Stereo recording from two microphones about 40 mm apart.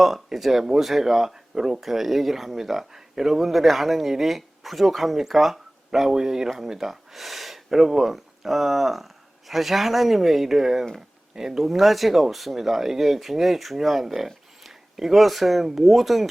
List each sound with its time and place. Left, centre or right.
0.0 s speech: centre